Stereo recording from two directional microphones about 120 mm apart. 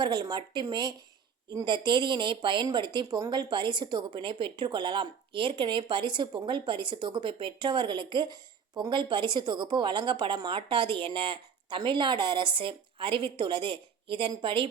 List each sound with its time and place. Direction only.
0.0 s a woman's voice: 40° right (ahead or behind)